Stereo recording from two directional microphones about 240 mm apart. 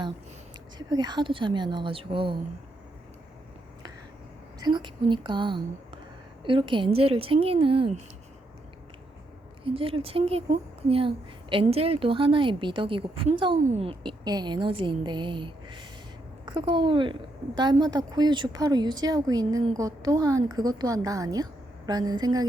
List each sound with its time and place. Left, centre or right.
0.8 s a woman's voice: centre
4.6 s a woman's voice: centre
9.6 s a woman's voice: right